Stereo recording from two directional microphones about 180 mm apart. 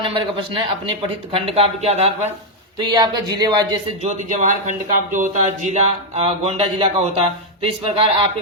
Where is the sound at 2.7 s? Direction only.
25° right (ahead or behind).